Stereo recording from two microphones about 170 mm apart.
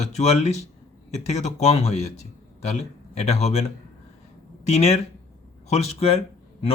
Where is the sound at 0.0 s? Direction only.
40° left (ahead or behind).